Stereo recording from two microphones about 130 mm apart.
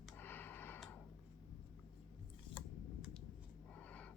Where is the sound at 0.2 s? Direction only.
15° left (ahead or behind).